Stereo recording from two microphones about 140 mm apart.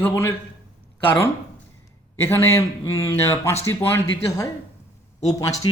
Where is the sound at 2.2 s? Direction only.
20° left (ahead or behind).